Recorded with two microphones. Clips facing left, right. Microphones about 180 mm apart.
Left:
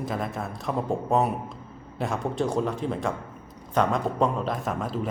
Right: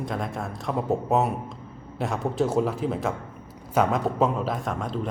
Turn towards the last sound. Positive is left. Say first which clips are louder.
# even
turn(degrees=0)  # may be behind; listen again after turning